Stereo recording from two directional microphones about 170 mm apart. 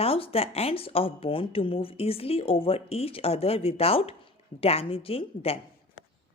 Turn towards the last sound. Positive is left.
turn(degrees=60)  # may be behind; listen again after turning